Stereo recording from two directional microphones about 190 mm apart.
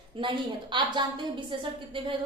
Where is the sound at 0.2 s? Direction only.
25° right (ahead or behind).